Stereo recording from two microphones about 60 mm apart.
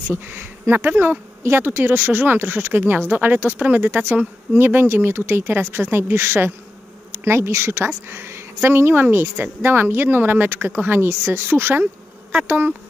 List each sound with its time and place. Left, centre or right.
0.1 s speech: right
8.1 s a sound: right
8.6 s speech: right